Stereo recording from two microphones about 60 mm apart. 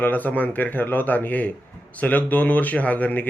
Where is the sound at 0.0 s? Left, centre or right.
Left.